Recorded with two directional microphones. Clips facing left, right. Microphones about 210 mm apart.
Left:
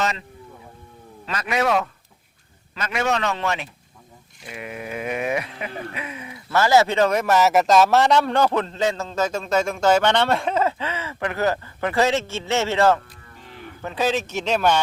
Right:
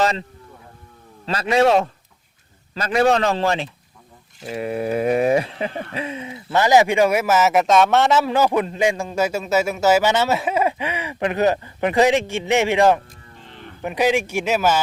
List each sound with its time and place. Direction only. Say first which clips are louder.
0.0 s a man's voice: right 5 dB; 30° right (ahead or behind); by 14.8 s 5° right (ahead or behind)